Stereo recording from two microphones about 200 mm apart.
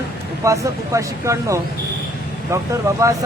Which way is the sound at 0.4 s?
15° right (ahead or behind).